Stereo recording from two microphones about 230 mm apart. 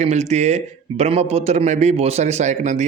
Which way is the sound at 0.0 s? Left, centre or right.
Right.